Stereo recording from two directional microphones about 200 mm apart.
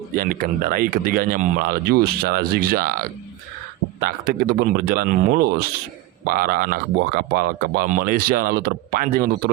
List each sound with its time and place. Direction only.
0.2 s speech: 45° right (ahead or behind)